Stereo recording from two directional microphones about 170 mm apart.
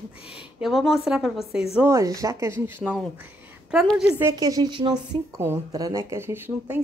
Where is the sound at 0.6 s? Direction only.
Centre (ahead or behind).